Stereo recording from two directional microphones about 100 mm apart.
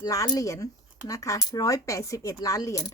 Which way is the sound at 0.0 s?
40° left (ahead or behind).